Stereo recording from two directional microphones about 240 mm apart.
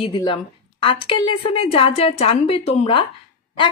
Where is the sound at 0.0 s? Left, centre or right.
Centre.